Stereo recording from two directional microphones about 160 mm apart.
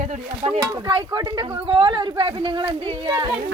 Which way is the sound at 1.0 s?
25° right (ahead or behind).